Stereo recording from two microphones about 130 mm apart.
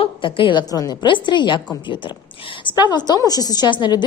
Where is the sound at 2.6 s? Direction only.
35° left (ahead or behind).